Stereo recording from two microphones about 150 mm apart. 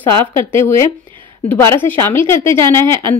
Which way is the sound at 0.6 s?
15° left (ahead or behind).